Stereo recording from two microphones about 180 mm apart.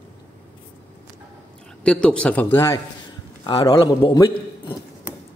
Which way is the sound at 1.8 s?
5° left (ahead or behind).